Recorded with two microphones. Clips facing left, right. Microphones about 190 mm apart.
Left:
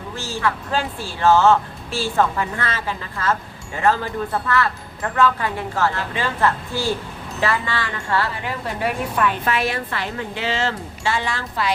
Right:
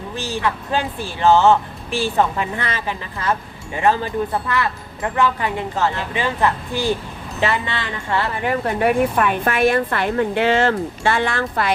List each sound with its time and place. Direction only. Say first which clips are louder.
0.2 s speech: right 1 dB; 20° right (ahead or behind)
8.4 s speech: right 6 dB; 55° right (ahead or behind)